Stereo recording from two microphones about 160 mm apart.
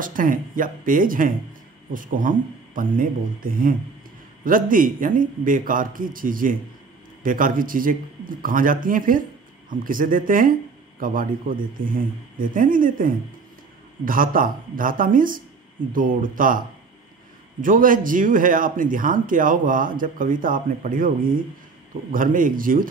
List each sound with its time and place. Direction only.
0.0 s speech: 55° right (ahead or behind)
4.5 s speech: 60° right (ahead or behind)